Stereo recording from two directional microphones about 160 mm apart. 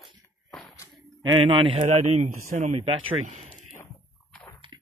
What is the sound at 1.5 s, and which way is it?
Speech, 30° right (ahead or behind).